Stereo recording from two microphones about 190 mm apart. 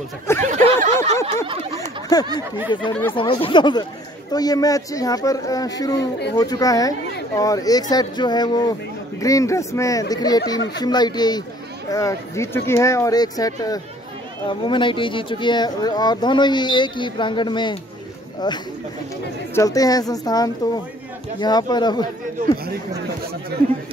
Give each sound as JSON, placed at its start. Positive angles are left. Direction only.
{"t": 0.4, "sound": "snicker", "side_deg": -40}
{"t": 1.2, "sound": "a sound", "side_deg": -30}
{"t": 2.1, "sound": "speech", "side_deg": 20}